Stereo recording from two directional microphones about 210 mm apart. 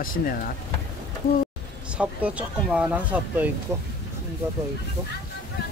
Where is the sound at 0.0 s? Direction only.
40° left (ahead or behind).